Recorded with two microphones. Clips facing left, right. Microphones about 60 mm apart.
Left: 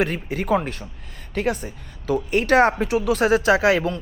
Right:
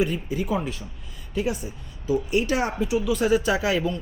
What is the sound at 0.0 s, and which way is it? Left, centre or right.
A woman's voice, left.